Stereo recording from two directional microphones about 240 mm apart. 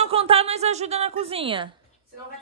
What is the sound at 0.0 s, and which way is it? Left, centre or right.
A woman's voice, right.